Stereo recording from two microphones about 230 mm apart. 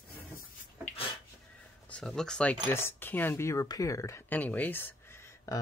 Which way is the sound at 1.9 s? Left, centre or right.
Centre.